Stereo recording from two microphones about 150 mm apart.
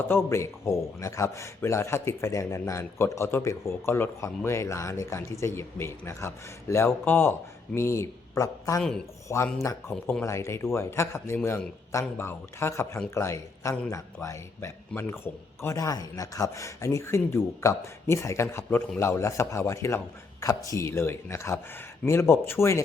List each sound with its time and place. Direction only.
0.1 s a man's voice: 15° left (ahead or behind)